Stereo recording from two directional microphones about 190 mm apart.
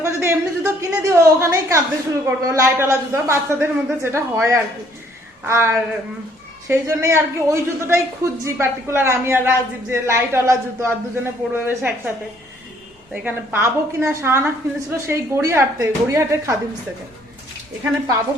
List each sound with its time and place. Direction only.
0.0 s a woman's voice: 15° right (ahead or behind)
13.2 s a woman's voice: 10° right (ahead or behind)